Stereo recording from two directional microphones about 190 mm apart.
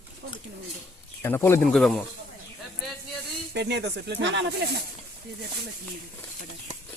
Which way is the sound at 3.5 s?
65° right (ahead or behind).